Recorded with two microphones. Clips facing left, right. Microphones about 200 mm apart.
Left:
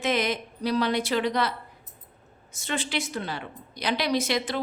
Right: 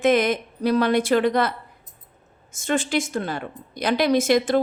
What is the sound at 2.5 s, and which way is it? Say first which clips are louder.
A woman's voice: right 7 dB; 45° right (ahead or behind).